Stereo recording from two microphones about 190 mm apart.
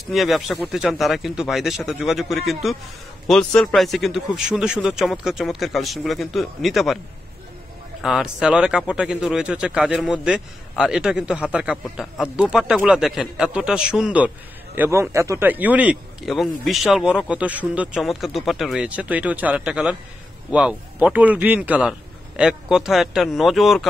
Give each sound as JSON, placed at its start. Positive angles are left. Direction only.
{"t": 0.0, "sound": "speech", "side_deg": 0}
{"t": 8.0, "sound": "a man's voice", "side_deg": 0}